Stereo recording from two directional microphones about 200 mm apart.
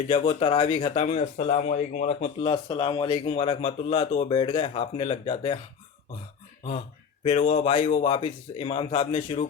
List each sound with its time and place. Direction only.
0.1 s speech: 25° left (ahead or behind)
7.3 s speech: 30° left (ahead or behind)